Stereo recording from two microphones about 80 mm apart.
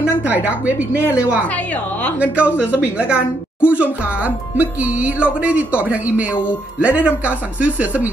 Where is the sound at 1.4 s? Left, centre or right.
Centre.